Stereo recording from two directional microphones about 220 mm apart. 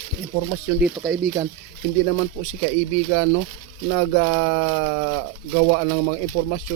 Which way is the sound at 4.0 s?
60° right (ahead or behind).